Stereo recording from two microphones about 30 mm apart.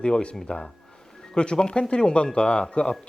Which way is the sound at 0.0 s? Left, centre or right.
Left.